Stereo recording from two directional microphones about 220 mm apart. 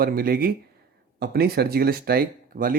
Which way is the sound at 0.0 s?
40° right (ahead or behind).